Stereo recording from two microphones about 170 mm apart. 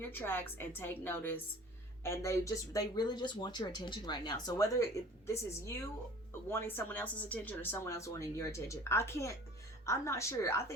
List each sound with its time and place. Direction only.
0.0 s speech: 10° left (ahead or behind)